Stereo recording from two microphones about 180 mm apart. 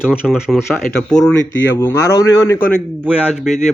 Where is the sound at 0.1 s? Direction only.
5° right (ahead or behind).